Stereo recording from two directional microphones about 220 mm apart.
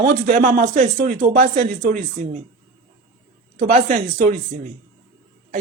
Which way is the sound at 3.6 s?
35° right (ahead or behind).